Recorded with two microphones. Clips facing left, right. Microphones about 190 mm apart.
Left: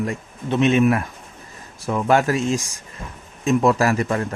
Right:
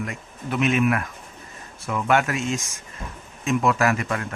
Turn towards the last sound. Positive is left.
turn(degrees=35)  # may be behind; listen again after turning